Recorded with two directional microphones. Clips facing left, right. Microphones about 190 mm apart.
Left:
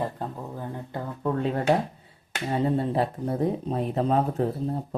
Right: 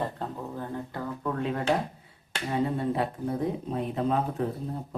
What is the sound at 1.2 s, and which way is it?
Speech, 35° left (ahead or behind).